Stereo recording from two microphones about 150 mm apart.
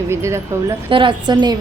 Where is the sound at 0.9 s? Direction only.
35° right (ahead or behind).